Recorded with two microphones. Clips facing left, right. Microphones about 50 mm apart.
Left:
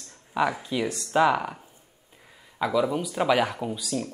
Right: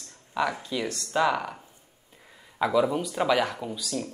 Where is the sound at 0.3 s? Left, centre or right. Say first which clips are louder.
Left 2 dB; centre.